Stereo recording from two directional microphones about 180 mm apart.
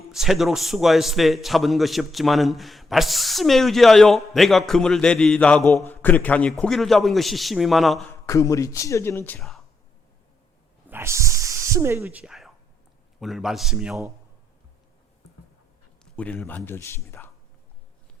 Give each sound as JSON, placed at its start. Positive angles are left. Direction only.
{"t": 0.1, "sound": "a man's voice", "side_deg": 0}
{"t": 8.3, "sound": "speech", "side_deg": 15}
{"t": 10.8, "sound": "a sound", "side_deg": -15}
{"t": 13.1, "sound": "a man's voice", "side_deg": 0}
{"t": 16.1, "sound": "speech", "side_deg": 5}